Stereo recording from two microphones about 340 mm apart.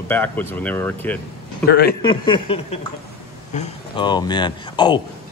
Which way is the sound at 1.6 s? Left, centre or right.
Left.